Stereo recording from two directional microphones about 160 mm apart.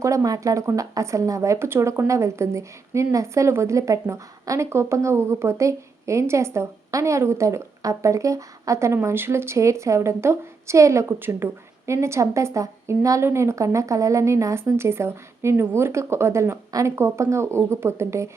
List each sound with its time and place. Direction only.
0.0 s speech: 20° right (ahead or behind)